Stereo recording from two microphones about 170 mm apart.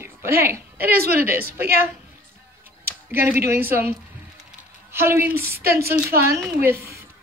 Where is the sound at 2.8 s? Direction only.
15° right (ahead or behind).